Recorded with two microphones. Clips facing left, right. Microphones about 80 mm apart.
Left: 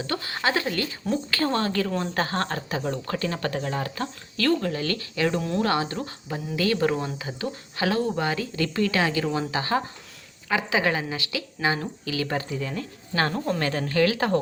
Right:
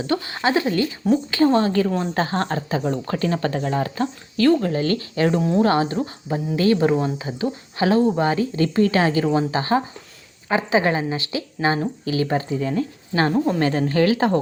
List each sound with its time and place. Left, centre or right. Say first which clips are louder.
0.1 s speech: right 6 dB; right
5.5 s speech: right 6 dB; centre
13.3 s speech: right 7 dB; centre
13.6 s speech: right 4 dB; right